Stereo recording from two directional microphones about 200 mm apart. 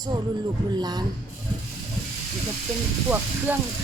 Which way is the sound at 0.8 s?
20° right (ahead or behind).